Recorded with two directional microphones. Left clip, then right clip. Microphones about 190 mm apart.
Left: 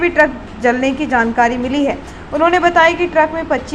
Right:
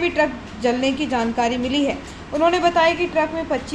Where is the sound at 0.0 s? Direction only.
5° left (ahead or behind).